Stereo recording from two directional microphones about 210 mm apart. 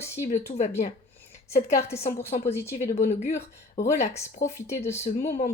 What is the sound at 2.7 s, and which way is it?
Speech, 35° left (ahead or behind).